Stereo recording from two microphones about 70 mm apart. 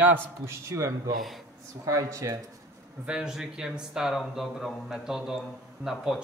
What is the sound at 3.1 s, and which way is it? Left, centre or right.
A man's voice, centre.